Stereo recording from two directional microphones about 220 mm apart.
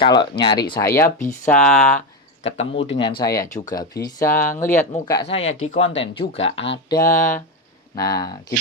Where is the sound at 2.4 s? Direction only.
30° left (ahead or behind).